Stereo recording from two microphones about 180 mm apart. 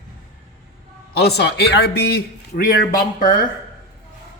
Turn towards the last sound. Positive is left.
turn(degrees=50)  # may be behind; listen again after turning